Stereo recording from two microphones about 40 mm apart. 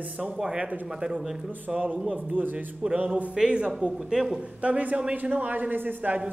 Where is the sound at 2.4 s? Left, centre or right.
Right.